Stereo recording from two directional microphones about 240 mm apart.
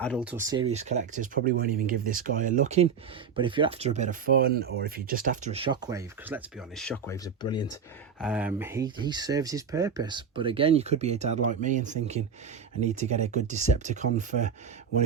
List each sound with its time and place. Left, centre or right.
0.0 s speech: centre
7.4 s speech: centre
8.2 s speech: centre; by 14.5 s right